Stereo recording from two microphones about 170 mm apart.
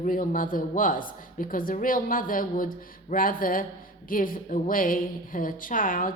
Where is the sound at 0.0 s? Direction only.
55° left (ahead or behind).